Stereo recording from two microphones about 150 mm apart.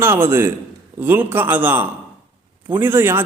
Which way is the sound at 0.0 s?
15° right (ahead or behind).